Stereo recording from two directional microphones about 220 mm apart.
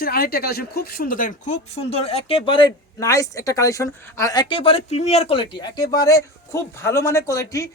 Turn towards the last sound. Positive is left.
turn(degrees=15)  # may be behind; listen again after turning